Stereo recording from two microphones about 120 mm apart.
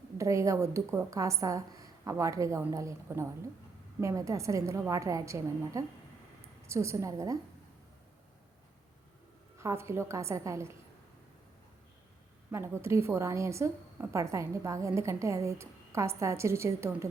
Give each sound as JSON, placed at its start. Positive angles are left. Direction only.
{"t": 0.2, "sound": "a woman's voice", "side_deg": -25}
{"t": 9.6, "sound": "a woman's voice", "side_deg": -25}
{"t": 12.5, "sound": "a woman's voice", "side_deg": -20}